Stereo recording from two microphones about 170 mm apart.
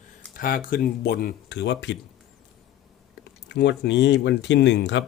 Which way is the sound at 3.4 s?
90° left.